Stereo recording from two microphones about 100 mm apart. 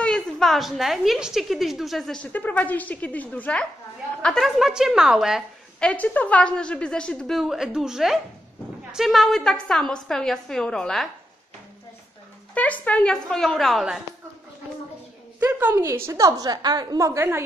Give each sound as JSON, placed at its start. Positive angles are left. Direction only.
{"t": 0.0, "sound": "a woman's voice", "side_deg": 5}
{"t": 2.3, "sound": "a woman's voice", "side_deg": 15}
{"t": 4.2, "sound": "a woman's voice", "side_deg": 5}
{"t": 5.8, "sound": "a woman's voice", "side_deg": 10}
{"t": 12.5, "sound": "a woman's voice", "side_deg": 15}
{"t": 15.4, "sound": "a woman's voice", "side_deg": -15}
{"t": 15.8, "sound": "a woman's voice", "side_deg": -30}